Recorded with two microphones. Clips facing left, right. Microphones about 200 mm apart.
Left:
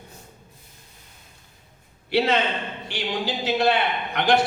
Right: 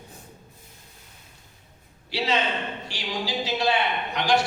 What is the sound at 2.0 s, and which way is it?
A man's voice, 55° left (ahead or behind).